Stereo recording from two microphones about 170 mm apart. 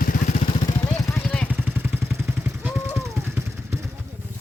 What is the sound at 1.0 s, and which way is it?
Vehicle, 15° left (ahead or behind).